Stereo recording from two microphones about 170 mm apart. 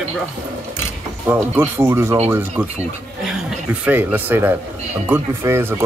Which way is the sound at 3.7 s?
10° right (ahead or behind).